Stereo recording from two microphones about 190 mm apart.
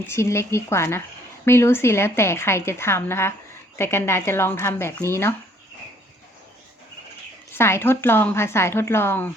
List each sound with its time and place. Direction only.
0.0 s a woman's voice: 15° left (ahead or behind)
7.5 s a woman's voice: 10° left (ahead or behind)